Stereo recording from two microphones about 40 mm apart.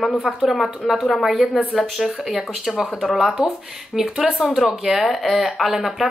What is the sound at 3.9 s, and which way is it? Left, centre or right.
A woman's voice, centre.